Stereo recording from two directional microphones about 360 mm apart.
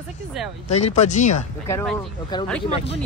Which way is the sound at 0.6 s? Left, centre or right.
Centre.